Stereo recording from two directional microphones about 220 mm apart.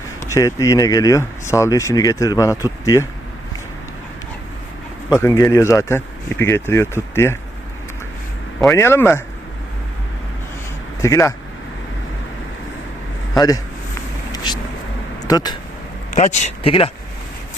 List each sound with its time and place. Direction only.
0.3 s speech: 15° left (ahead or behind)
5.2 s speech: 15° left (ahead or behind)
8.7 s speech: 10° left (ahead or behind)
11.0 s speech: 15° left (ahead or behind)
13.3 s speech: 15° left (ahead or behind)
14.3 s vehicle: 20° left (ahead or behind)
15.2 s speech: 15° left (ahead or behind)
16.1 s speech: 30° left (ahead or behind)